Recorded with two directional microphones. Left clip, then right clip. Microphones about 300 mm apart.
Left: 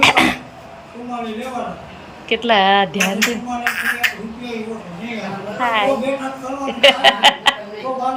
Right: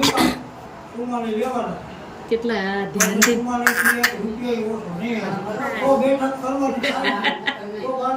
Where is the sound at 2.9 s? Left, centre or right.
Centre.